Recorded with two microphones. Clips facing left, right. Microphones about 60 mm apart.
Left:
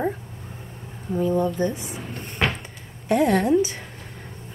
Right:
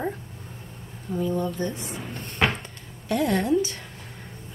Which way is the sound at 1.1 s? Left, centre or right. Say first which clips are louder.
Left 4 dB; centre.